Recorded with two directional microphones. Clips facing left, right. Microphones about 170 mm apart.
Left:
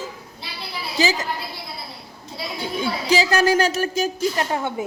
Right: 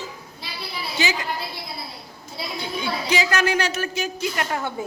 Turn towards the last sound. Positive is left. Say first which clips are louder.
# left 3 dB
turn(degrees=25)  # may be behind; listen again after turning